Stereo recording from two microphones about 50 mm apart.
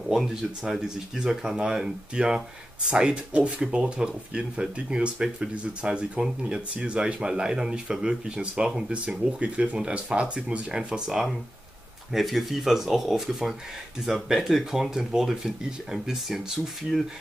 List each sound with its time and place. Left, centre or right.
0.1 s speech: centre
9.4 s speech: right; by 17.0 s centre